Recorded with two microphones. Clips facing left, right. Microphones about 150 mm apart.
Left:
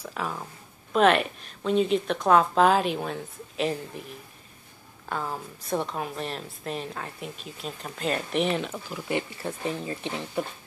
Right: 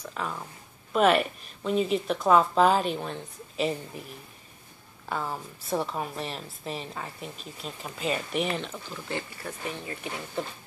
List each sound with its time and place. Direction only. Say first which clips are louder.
0.0 s a woman's voice: left 1 dB; 5° left (ahead or behind)
5.1 s a woman's voice: even; centre (ahead or behind)
9.4 s speech: left 5 dB; 30° left (ahead or behind)